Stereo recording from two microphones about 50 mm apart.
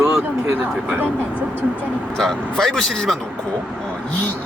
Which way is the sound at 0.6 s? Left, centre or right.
Right.